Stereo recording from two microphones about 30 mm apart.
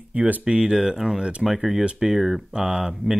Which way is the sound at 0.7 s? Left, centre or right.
Centre.